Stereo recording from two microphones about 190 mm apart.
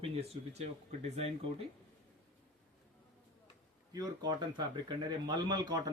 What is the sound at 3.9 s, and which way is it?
Speech, 20° right (ahead or behind).